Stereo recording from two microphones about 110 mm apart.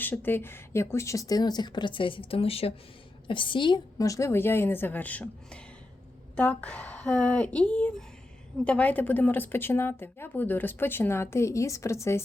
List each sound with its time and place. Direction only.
0.0 s speech: 20° left (ahead or behind); by 2.7 s 60° left (ahead or behind)
3.2 s a woman's voice: 50° left (ahead or behind)
3.9 s speech: 30° left (ahead or behind)